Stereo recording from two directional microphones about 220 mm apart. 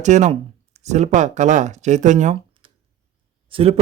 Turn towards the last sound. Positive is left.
turn(degrees=-25)  # may be behind; listen again after turning